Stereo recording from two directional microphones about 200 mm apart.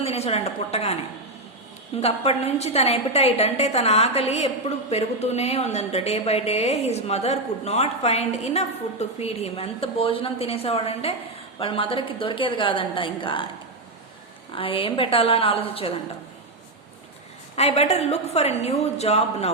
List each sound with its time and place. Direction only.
0.0 s a woman's voice: 30° left (ahead or behind)
2.0 s a woman's voice: 30° left (ahead or behind)
14.5 s a woman's voice: 25° left (ahead or behind)
17.6 s a woman's voice: 30° left (ahead or behind)